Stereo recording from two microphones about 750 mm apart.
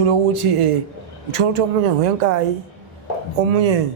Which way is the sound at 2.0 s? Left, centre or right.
Right.